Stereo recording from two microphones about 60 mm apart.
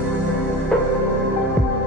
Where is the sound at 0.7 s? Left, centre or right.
Centre.